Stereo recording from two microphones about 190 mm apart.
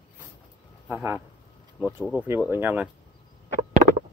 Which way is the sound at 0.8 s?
10° right (ahead or behind).